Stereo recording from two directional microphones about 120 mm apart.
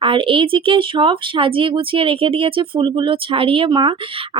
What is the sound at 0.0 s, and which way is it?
Speech, 45° right (ahead or behind).